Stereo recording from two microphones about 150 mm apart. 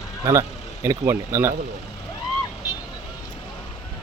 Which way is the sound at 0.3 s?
20° right (ahead or behind).